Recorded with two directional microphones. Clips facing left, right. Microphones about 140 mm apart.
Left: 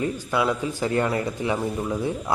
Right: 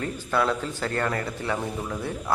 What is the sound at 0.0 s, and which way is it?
A man's voice, 10° left (ahead or behind).